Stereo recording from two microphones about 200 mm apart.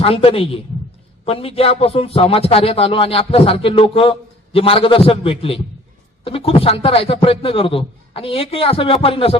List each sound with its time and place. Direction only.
0.0 s a man's voice: 30° left (ahead or behind)